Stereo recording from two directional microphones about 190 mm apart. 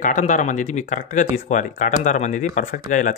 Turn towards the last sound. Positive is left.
turn(degrees=40)  # may be behind; listen again after turning